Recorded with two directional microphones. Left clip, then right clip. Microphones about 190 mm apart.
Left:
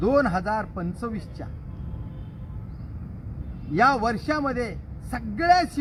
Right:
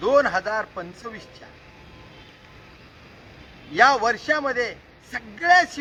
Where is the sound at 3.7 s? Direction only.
5° right (ahead or behind).